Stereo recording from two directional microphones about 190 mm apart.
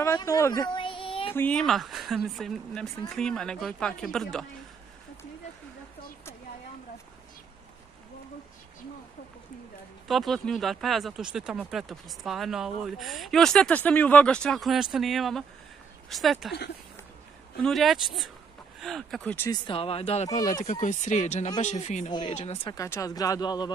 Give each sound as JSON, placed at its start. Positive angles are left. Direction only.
{"t": 0.0, "sound": "a woman's voice", "side_deg": 15}
{"t": 0.7, "sound": "child singing", "side_deg": 25}
{"t": 1.3, "sound": "speech", "side_deg": 5}
{"t": 10.0, "sound": "speech", "side_deg": 0}
{"t": 17.6, "sound": "speech", "side_deg": 0}
{"t": 19.5, "sound": "speech", "side_deg": 25}
{"t": 22.8, "sound": "speech", "side_deg": 15}